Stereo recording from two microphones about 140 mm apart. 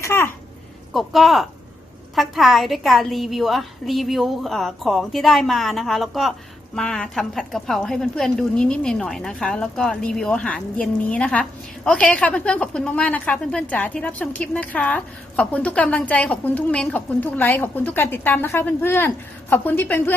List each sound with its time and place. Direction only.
0.0 s babbling: 15° left (ahead or behind)
0.9 s a woman's voice: centre (ahead or behind)